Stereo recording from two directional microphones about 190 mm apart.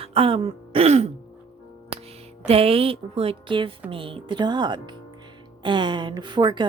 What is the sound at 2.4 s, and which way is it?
Speech, 30° right (ahead or behind).